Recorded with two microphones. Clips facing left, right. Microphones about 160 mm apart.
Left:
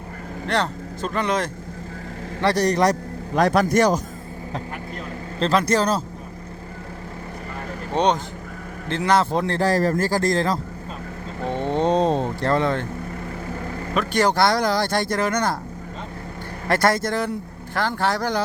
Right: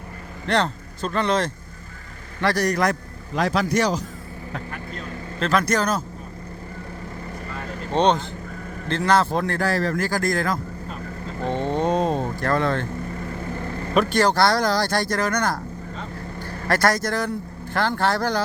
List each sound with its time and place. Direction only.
0.4 s speech: 10° left (ahead or behind)
2.4 s a man's voice: 30° left (ahead or behind)
3.3 s speech: 55° left (ahead or behind)
5.4 s a man's voice: 30° left (ahead or behind)
7.9 s speech: 10° left (ahead or behind)
9.6 s a man's voice: 40° left (ahead or behind)
11.3 s vehicle: 10° left (ahead or behind)
12.4 s speech: 20° left (ahead or behind)
14.1 s speech: 20° left (ahead or behind)
16.6 s speech: 20° left (ahead or behind)